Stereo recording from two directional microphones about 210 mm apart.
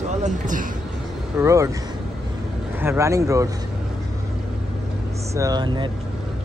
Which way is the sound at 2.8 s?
15° right (ahead or behind).